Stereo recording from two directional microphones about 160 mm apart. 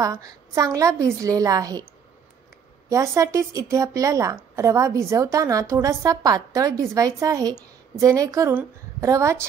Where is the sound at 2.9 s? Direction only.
20° right (ahead or behind).